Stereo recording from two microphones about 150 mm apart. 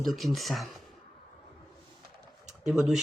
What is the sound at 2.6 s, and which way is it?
Speech, 5° right (ahead or behind).